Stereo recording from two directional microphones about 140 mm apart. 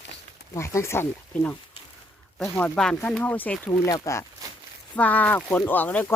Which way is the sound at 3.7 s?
25° left (ahead or behind).